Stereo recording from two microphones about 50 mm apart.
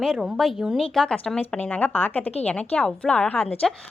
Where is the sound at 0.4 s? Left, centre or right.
Centre.